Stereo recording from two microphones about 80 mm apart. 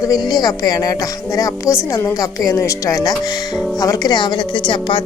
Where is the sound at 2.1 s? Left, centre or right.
Left.